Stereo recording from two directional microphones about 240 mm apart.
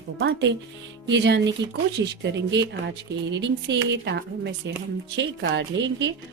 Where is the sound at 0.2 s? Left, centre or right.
Right.